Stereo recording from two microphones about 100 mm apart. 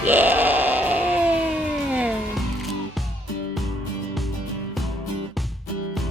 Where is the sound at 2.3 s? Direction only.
Centre (ahead or behind).